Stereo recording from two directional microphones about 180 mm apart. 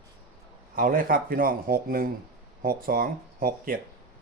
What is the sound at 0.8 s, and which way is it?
Speech, 50° right (ahead or behind).